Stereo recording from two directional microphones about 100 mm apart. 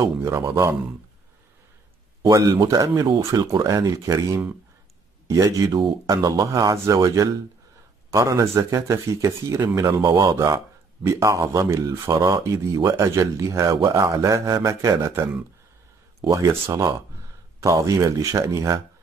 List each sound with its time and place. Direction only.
0.0 s a man's voice: 30° right (ahead or behind)
2.2 s speech: 35° right (ahead or behind)
10.3 s a man's voice: 30° right (ahead or behind)